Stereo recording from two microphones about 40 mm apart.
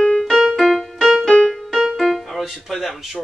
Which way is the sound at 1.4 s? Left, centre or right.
Centre.